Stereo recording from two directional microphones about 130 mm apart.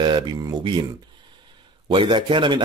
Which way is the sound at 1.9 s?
40° right (ahead or behind).